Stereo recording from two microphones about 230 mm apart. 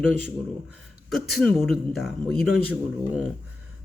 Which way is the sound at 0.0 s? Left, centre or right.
Centre.